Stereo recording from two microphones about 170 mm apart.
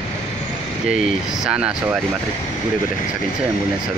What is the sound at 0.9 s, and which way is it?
Speech, 5° right (ahead or behind).